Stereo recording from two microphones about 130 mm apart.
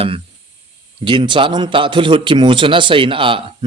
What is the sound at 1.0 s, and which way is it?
A man's voice, 40° right (ahead or behind).